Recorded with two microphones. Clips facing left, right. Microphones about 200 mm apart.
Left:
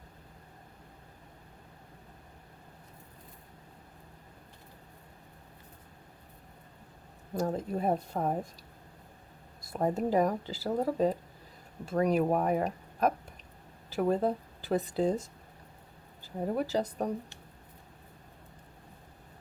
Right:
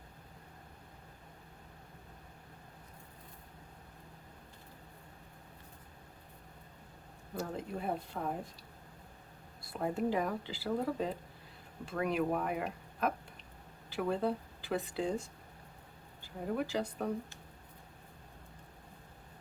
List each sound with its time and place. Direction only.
7.3 s speech: 40° left (ahead or behind)
9.6 s speech: 40° left (ahead or behind)